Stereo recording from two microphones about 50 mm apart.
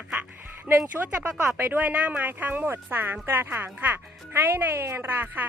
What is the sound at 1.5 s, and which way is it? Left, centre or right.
Speech, right.